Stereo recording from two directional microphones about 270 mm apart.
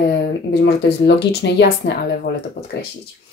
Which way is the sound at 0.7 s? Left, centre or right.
Left.